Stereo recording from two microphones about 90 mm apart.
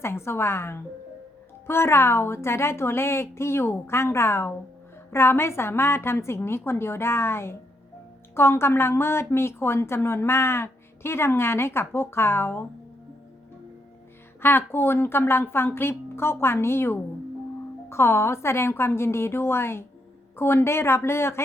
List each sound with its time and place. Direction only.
0.0 s a woman's voice: 30° left (ahead or behind)
14.4 s a woman's voice: 25° left (ahead or behind)